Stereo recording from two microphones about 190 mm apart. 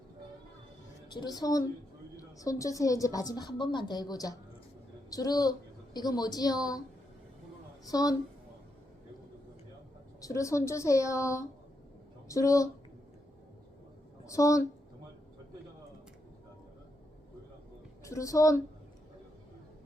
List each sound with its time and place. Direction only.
1.1 s a woman's voice: 20° left (ahead or behind)
7.9 s a woman's voice: 20° left (ahead or behind)
10.2 s a woman's voice: 15° left (ahead or behind)
14.3 s a woman's voice: 15° left (ahead or behind)
18.0 s a woman's voice: 15° left (ahead or behind)